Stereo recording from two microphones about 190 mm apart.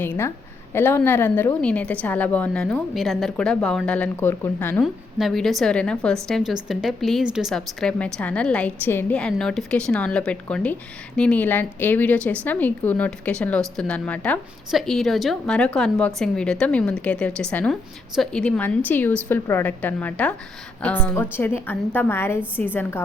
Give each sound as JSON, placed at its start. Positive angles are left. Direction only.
{"t": 0.0, "sound": "a woman's voice", "side_deg": 15}